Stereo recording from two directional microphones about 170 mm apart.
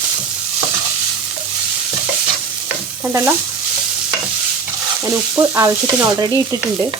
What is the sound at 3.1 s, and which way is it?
Stir, 10° right (ahead or behind).